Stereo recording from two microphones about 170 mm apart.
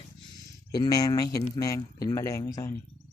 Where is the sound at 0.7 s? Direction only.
20° left (ahead or behind).